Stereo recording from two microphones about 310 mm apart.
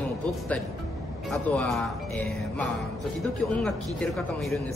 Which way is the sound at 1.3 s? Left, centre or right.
Centre.